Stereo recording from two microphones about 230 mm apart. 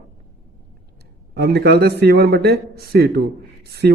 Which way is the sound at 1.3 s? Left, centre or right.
Right.